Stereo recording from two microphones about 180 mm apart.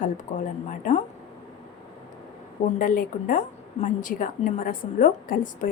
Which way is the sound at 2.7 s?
50° left (ahead or behind).